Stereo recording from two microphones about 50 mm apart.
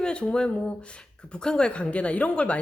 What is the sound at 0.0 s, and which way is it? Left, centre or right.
Speech, left.